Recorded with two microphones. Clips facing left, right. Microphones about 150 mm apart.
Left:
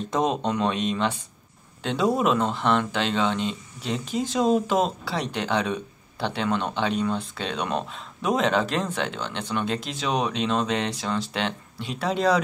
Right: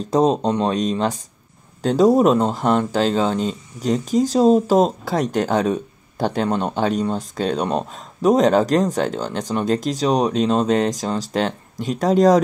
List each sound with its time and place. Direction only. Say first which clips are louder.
0.0 s speech: right 7 dB; 35° right (ahead or behind)